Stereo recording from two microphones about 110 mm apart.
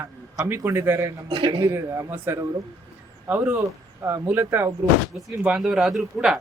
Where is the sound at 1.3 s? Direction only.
50° right (ahead or behind).